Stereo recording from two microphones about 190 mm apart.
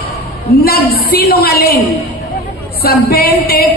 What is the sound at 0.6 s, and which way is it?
A woman's voice, 55° left (ahead or behind).